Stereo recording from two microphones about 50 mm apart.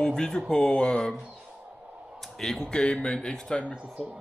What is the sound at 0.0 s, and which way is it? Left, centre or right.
Speech, centre.